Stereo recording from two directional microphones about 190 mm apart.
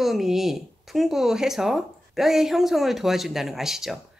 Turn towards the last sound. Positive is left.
turn(degrees=0)  # may be behind; listen again after turning